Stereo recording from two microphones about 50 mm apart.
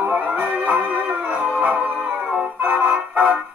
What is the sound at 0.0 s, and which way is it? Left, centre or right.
Music, right.